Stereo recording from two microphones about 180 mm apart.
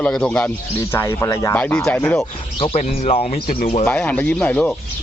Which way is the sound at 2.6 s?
35° left (ahead or behind).